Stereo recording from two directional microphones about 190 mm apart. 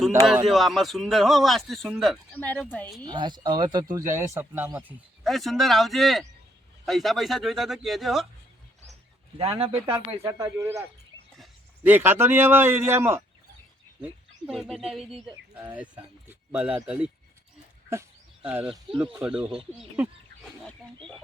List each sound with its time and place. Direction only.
0.4 s speech: centre (ahead or behind)
3.0 s speech: 25° right (ahead or behind)
4.9 s speech: centre (ahead or behind)
9.6 s speech: 30° right (ahead or behind)
10.2 s speech: 15° right (ahead or behind)
18.4 s speech: 5° right (ahead or behind)
20.6 s wild animals: 5° left (ahead or behind)